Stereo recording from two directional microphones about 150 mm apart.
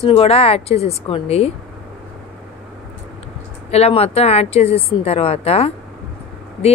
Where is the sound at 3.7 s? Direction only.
40° left (ahead or behind).